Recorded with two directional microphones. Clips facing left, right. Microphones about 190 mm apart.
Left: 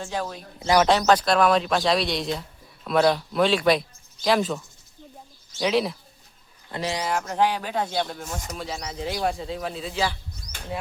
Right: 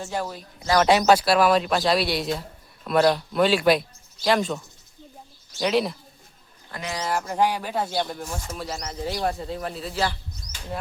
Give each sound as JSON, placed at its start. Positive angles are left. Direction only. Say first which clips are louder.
{"t": 0.0, "sound": "speech", "louder": "even", "side_deg": -5}
{"t": 6.7, "sound": "speech", "louder": "left 4 dB", "side_deg": 25}
{"t": 7.0, "sound": "speech", "louder": "right 1 dB", "side_deg": 0}